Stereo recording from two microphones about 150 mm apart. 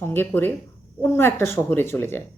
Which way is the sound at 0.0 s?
15° left (ahead or behind).